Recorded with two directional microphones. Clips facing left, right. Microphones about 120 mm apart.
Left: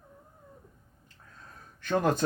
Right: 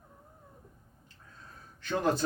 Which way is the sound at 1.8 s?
50° left (ahead or behind).